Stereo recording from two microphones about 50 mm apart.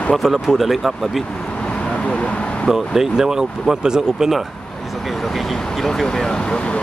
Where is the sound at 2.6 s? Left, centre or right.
Centre.